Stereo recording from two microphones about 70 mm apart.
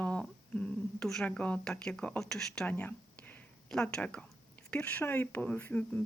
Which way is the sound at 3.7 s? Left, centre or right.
Centre.